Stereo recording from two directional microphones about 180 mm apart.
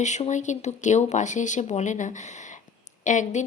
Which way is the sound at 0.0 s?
40° left (ahead or behind).